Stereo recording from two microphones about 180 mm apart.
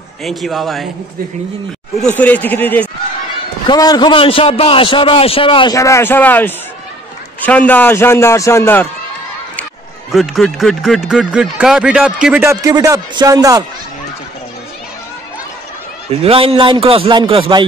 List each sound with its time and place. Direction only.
0.2 s speech: centre (ahead or behind)
2.0 s a man's voice: 5° left (ahead or behind)
3.6 s a man's voice: 20° left (ahead or behind)
10.1 s speech: centre (ahead or behind)
12.4 s a man's voice: 20° right (ahead or behind)
16.1 s a man's voice: 35° right (ahead or behind)